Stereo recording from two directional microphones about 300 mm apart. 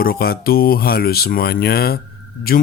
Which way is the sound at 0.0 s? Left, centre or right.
Left.